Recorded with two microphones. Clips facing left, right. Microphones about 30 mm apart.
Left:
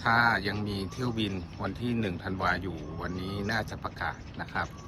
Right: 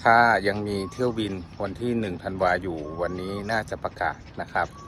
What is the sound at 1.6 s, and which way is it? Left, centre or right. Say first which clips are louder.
Speech: right 5 dB; right.